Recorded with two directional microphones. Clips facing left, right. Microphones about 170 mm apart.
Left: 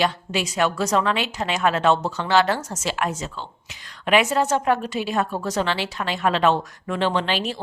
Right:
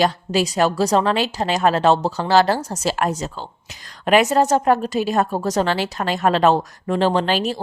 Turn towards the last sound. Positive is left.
turn(degrees=-40)  # may be behind; listen again after turning